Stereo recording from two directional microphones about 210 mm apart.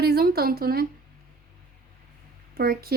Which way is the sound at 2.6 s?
45° right (ahead or behind).